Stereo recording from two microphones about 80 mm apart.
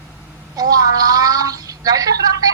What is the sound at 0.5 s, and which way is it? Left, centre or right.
A woman's voice, right.